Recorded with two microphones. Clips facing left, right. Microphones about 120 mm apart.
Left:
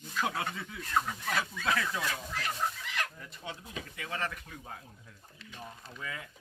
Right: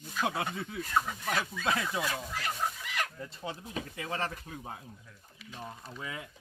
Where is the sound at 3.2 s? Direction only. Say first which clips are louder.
Right 4 dB; 30° right (ahead or behind).